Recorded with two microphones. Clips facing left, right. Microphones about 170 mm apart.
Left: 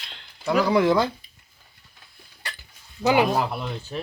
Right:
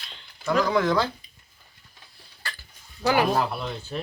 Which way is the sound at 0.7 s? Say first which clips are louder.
Left 3 dB; 25° left (ahead or behind).